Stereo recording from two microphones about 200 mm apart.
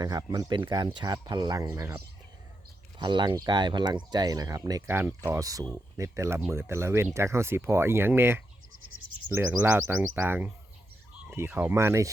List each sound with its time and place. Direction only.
0.0 s speech: 20° right (ahead or behind)
3.0 s speech: 20° right (ahead or behind)